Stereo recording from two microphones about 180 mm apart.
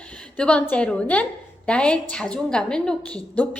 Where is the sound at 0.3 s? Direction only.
5° left (ahead or behind).